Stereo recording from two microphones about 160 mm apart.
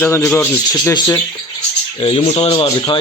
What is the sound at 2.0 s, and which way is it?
Speech, 35° left (ahead or behind).